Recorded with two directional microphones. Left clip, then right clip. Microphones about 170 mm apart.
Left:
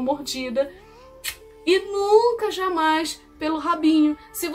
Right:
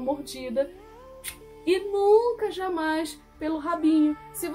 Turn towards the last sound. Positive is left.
turn(degrees=-10)  # may be behind; listen again after turning